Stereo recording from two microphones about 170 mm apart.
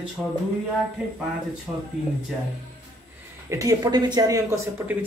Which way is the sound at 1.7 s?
10° right (ahead or behind).